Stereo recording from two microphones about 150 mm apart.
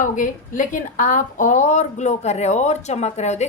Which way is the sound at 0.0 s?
60° left (ahead or behind).